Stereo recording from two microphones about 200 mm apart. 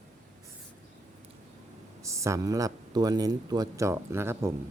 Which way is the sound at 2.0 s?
15° right (ahead or behind).